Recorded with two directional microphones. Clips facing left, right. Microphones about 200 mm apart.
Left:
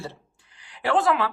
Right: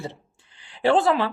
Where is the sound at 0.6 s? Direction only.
30° right (ahead or behind).